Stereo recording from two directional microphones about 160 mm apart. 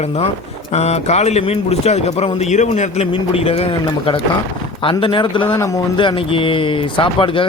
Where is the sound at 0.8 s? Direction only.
45° left (ahead or behind).